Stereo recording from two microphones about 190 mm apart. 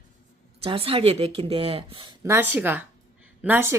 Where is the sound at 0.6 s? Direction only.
30° right (ahead or behind).